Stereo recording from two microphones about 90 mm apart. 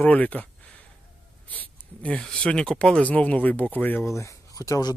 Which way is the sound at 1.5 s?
15° left (ahead or behind).